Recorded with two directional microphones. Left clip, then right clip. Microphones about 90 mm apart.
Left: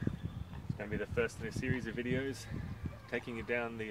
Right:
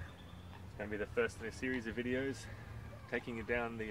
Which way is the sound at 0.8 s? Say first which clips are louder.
Left 1 dB; 25° left (ahead or behind).